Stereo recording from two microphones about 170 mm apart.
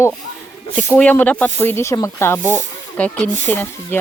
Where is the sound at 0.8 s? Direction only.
10° left (ahead or behind).